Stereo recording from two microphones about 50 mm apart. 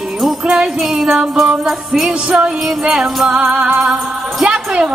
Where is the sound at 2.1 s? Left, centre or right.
Centre.